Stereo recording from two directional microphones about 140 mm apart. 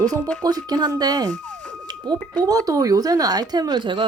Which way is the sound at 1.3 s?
60° right (ahead or behind).